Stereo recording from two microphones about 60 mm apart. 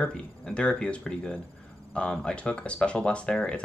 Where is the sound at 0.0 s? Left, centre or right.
Centre.